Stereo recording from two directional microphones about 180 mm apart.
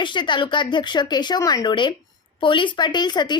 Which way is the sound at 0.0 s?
25° left (ahead or behind).